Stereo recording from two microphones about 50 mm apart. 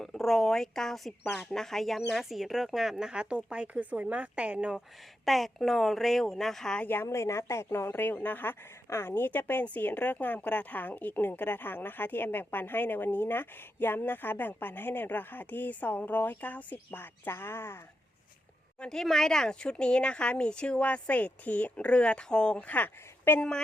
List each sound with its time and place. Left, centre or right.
0.0 s a woman's voice: centre; by 4.7 s right
5.2 s a woman's voice: centre
6.8 s speech: left
7.1 s speech: left
7.9 s a woman's voice: left
8.9 s a woman's voice: left
18.8 s a woman's voice: centre
22.6 s speech: left